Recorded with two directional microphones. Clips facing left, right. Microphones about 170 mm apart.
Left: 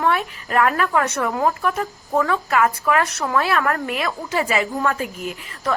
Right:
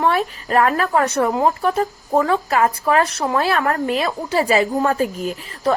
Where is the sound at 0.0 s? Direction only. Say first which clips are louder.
Right 2 dB; 35° right (ahead or behind).